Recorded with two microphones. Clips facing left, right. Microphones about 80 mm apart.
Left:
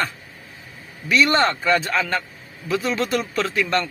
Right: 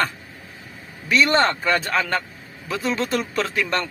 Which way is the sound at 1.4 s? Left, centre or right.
Right.